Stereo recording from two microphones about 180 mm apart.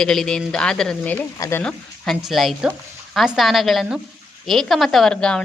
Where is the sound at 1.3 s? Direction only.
15° left (ahead or behind).